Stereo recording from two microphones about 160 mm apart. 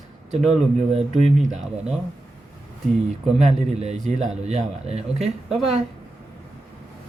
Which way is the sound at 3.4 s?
45° right (ahead or behind).